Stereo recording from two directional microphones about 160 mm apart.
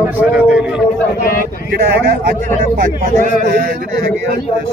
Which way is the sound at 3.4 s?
70° right (ahead or behind).